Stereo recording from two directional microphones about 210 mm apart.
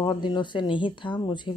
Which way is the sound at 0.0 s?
20° left (ahead or behind).